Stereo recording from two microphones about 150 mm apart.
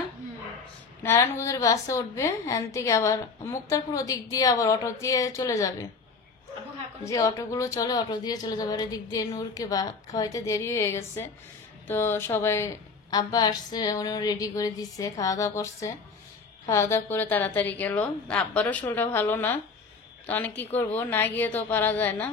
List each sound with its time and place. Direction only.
1.0 s a woman's voice: 15° left (ahead or behind)
7.1 s a woman's voice: 20° left (ahead or behind)